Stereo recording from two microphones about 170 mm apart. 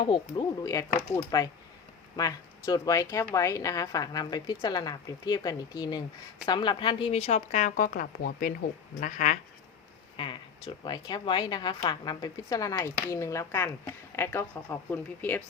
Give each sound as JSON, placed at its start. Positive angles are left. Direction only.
{"t": 0.1, "sound": "a woman's voice", "side_deg": 20}
{"t": 10.7, "sound": "speech", "side_deg": 25}